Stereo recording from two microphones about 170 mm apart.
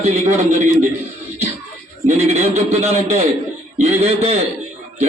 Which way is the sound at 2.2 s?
40° right (ahead or behind).